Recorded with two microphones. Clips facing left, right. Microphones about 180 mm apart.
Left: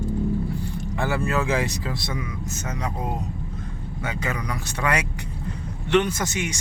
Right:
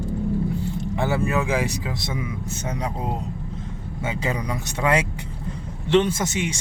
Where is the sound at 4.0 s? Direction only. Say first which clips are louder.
Right 3 dB; 25° right (ahead or behind).